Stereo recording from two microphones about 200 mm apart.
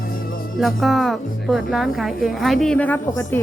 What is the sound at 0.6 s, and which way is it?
A woman's voice, centre (ahead or behind).